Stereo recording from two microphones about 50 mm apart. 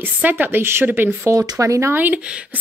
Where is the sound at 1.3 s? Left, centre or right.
Right.